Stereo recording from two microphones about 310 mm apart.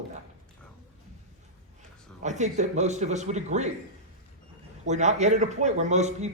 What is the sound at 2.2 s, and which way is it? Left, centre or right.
A man's voice, right.